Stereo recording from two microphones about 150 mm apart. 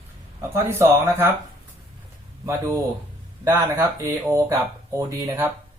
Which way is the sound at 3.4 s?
20° right (ahead or behind).